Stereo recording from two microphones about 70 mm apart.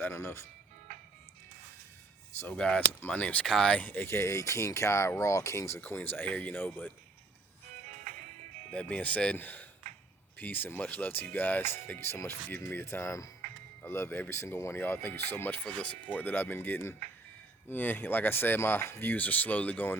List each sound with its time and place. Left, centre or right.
0.0 s speech: left
2.6 s speech: centre
3.4 s speech: centre
3.7 s speech: left
6.0 s speech: left
8.7 s speech: centre
15.6 s speech: centre; by 19.1 s left
19.1 s speech: left